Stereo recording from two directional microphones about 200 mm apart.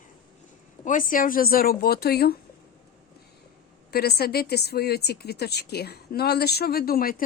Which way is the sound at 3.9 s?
50° left (ahead or behind).